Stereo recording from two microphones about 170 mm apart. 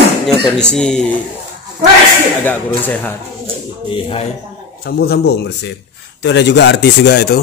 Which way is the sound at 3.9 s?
30° left (ahead or behind).